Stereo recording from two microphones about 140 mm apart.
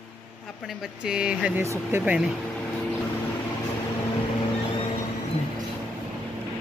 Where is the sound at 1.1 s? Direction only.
5° right (ahead or behind).